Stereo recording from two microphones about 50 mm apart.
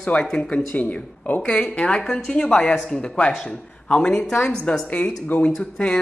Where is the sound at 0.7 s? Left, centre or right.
Left.